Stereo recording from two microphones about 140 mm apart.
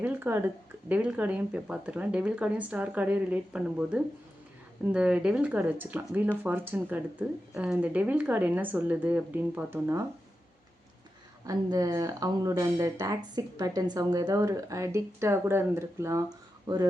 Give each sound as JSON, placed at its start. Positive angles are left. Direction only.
{"t": 0.0, "sound": "speech", "side_deg": -10}
{"t": 11.4, "sound": "speech", "side_deg": -25}